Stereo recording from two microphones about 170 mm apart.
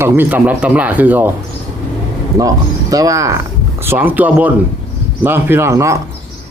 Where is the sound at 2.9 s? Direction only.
20° right (ahead or behind).